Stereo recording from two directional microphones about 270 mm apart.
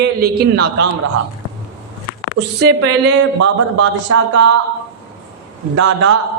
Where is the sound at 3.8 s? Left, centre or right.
Right.